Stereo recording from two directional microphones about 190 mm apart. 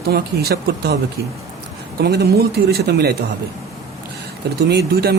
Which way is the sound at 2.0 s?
55° right (ahead or behind).